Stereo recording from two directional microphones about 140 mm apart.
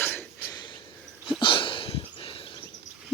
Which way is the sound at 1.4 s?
35° left (ahead or behind).